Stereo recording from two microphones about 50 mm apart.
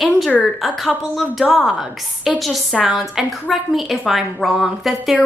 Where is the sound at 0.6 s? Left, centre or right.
Centre.